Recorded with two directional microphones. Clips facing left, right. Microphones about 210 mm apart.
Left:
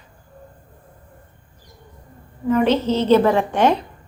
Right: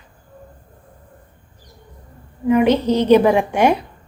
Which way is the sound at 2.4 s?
15° right (ahead or behind).